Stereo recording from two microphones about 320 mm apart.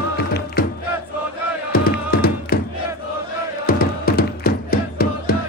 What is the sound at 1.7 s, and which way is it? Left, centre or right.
Music, left.